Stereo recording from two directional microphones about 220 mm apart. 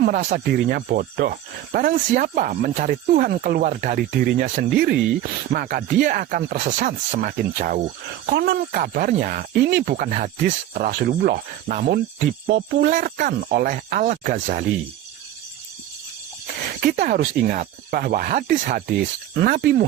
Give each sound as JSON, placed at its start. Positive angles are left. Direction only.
{"t": 0.0, "sound": "speech", "side_deg": -40}
{"t": 16.8, "sound": "speech", "side_deg": -45}